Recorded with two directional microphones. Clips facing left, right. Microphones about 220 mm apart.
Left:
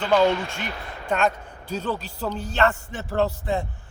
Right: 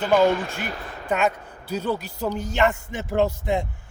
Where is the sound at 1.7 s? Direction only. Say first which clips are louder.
Right 2 dB; 10° right (ahead or behind).